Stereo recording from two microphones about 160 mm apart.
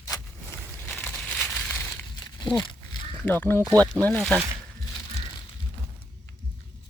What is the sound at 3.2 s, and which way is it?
Speech, 10° left (ahead or behind).